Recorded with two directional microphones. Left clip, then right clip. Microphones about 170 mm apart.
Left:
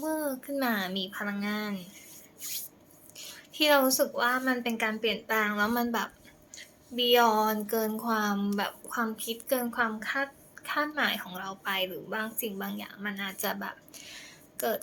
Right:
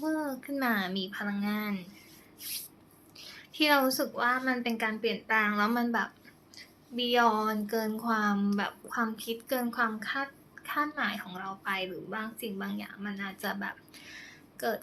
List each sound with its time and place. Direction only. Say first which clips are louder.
0.0 s a child's voice: left 1 dB; 5° left (ahead or behind)
3.2 s a woman's voice: left 1 dB; 5° left (ahead or behind)
13.1 s speech: left 4 dB; 20° left (ahead or behind)
13.4 s a sound: even; 10° left (ahead or behind)